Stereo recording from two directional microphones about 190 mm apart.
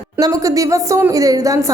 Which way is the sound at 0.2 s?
20° right (ahead or behind).